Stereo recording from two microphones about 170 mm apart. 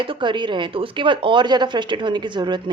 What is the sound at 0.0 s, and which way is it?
Speech, 30° right (ahead or behind).